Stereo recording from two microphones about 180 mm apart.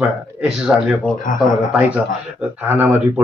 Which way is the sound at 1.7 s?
5° right (ahead or behind).